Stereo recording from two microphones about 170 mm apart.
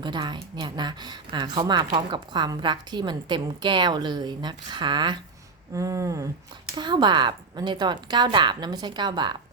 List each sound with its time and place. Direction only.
0.0 s speech: 25° right (ahead or behind)